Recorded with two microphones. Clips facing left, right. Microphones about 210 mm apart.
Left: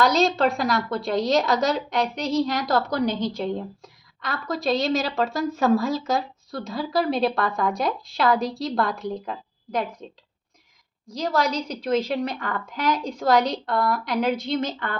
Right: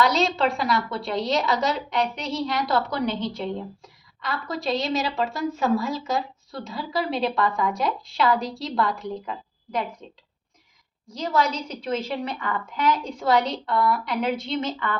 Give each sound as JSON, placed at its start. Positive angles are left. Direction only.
{"t": 0.0, "sound": "a woman's voice", "side_deg": 40}
{"t": 11.1, "sound": "a woman's voice", "side_deg": 40}